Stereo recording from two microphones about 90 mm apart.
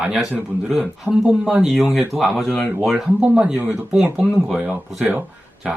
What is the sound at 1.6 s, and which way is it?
Speech, centre (ahead or behind).